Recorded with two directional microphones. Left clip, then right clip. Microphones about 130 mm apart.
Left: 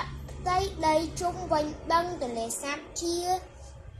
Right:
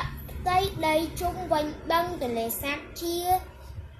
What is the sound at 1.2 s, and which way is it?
A child's voice, 10° right (ahead or behind).